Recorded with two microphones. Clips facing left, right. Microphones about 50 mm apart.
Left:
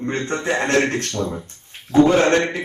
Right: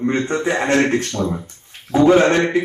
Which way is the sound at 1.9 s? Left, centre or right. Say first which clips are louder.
Right 1 dB; centre.